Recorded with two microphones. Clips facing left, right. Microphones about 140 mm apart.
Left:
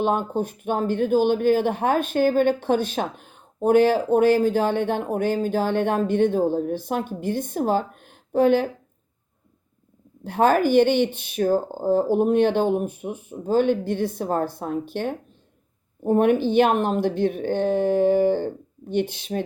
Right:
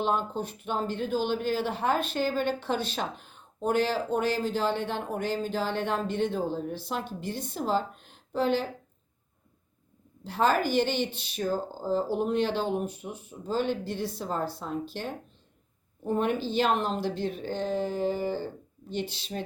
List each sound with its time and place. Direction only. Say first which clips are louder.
0.0 s speech: left 6 dB; 50° left (ahead or behind)
10.2 s speech: left 7 dB; 55° left (ahead or behind)